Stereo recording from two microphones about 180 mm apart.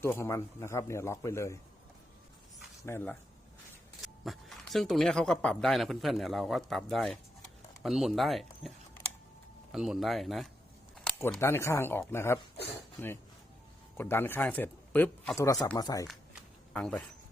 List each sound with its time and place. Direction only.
0.0 s a man's voice: 15° left (ahead or behind)
2.8 s a man's voice: 10° left (ahead or behind)
4.0 s speech: centre (ahead or behind)
9.7 s a man's voice: centre (ahead or behind); by 12.4 s 15° left (ahead or behind)
13.9 s speech: 10° left (ahead or behind)
15.8 s speech: 20° left (ahead or behind)
16.7 s speech: 5° left (ahead or behind)